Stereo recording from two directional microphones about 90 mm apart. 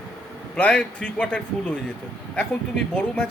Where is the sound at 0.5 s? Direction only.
10° left (ahead or behind).